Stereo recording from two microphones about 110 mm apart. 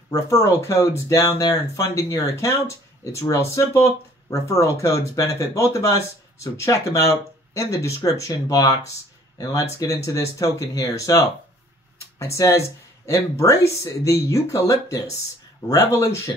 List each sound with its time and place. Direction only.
0.1 s speech: 25° left (ahead or behind)